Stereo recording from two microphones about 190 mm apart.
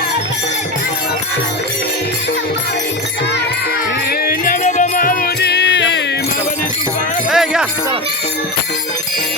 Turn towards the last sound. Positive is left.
turn(degrees=-5)  # may be behind; listen again after turning